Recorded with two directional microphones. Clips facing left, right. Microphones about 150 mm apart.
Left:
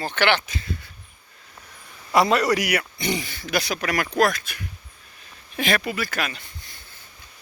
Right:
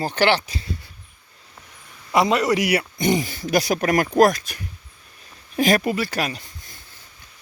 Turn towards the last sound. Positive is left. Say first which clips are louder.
# right 3 dB
turn(degrees=-40)  # may be behind; listen again after turning